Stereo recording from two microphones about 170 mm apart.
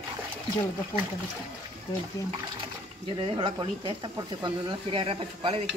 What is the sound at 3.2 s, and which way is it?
Speech, 30° right (ahead or behind).